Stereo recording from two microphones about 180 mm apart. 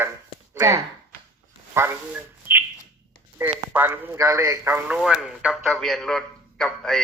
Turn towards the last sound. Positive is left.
turn(degrees=0)  # may be behind; listen again after turning